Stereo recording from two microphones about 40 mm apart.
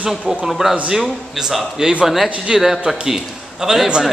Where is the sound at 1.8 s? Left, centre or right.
Centre.